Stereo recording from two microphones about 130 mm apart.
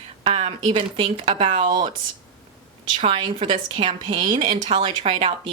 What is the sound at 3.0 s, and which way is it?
A woman's voice, 45° right (ahead or behind).